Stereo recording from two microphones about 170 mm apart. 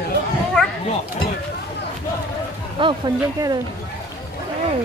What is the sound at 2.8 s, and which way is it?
Speech, 30° right (ahead or behind).